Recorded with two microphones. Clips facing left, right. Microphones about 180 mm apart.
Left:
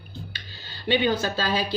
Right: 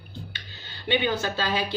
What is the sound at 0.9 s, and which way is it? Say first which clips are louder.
Speech: left 2 dB; 35° left (ahead or behind).